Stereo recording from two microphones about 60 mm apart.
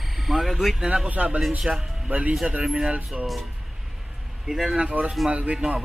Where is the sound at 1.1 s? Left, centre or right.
Right.